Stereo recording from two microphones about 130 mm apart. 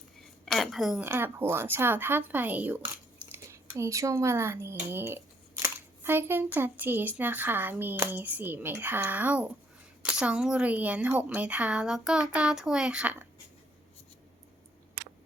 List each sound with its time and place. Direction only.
0.4 s a woman's voice: centre (ahead or behind)